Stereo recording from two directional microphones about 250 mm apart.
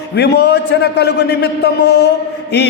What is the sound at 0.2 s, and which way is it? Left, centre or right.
A man's voice, left.